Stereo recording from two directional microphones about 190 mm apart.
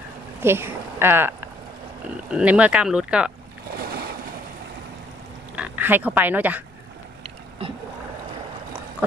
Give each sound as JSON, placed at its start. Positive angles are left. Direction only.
{"t": 0.4, "sound": "speech", "side_deg": -10}
{"t": 2.3, "sound": "speech", "side_deg": -5}
{"t": 5.6, "sound": "speech", "side_deg": -10}